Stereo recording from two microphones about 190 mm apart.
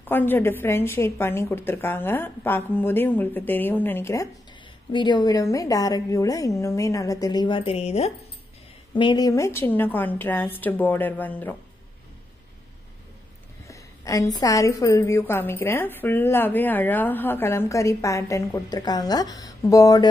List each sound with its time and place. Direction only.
0.0 s a woman's voice: 10° left (ahead or behind)
13.7 s a sound: 15° left (ahead or behind)
14.4 s a woman's voice: 15° left (ahead or behind)